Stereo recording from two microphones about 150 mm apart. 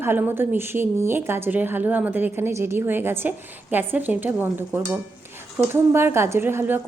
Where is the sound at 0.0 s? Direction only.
15° right (ahead or behind).